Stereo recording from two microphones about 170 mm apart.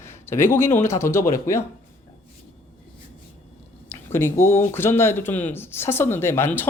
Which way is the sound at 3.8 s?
15° left (ahead or behind).